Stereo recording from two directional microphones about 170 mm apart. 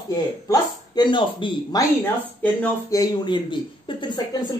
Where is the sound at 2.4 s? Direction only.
10° left (ahead or behind).